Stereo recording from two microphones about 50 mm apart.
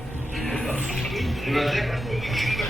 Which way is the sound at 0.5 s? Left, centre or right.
Centre.